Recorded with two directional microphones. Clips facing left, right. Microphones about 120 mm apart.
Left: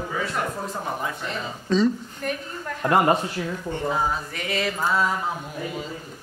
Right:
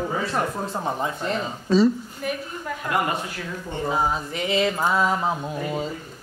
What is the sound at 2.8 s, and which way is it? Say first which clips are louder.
Speech: left 6 dB; 35° left (ahead or behind).